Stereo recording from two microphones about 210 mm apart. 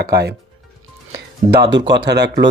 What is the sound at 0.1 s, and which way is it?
Speech, 50° right (ahead or behind).